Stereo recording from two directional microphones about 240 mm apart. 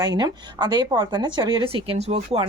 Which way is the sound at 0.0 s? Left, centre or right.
Centre.